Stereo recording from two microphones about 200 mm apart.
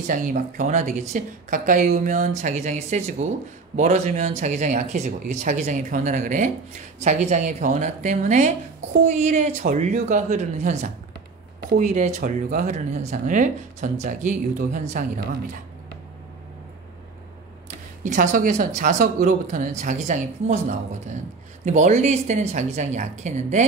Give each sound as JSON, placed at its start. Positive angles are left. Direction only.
{"t": 0.0, "sound": "speech", "side_deg": -40}
{"t": 18.0, "sound": "speech", "side_deg": -40}